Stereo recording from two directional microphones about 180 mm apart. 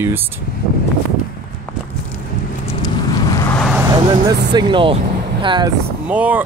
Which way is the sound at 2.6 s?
20° left (ahead or behind).